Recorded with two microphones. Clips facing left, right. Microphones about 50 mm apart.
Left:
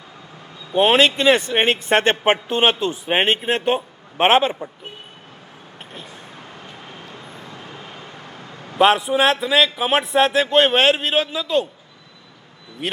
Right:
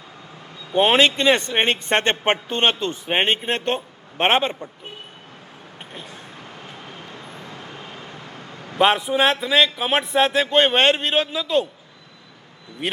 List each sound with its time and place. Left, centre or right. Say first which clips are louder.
0.7 s speech: left 1 dB; centre
7.9 s vehicle: even; left
8.8 s speech: left 2 dB; centre
12.8 s speech: even; centre